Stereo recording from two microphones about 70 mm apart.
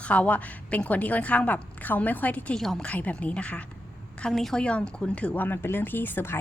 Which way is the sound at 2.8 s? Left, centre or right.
Centre.